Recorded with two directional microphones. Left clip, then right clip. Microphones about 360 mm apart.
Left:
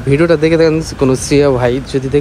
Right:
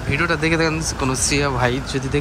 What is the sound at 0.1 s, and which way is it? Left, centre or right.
Speech, centre.